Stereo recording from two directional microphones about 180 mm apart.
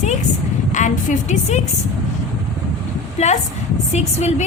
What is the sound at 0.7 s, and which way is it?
Speech, 45° left (ahead or behind).